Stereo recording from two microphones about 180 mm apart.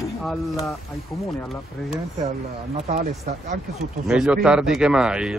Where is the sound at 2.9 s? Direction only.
45° right (ahead or behind).